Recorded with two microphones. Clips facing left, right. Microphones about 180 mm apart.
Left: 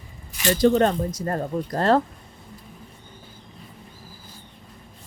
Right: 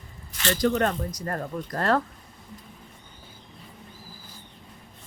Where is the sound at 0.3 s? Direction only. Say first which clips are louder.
Left 4 dB; 15° left (ahead or behind).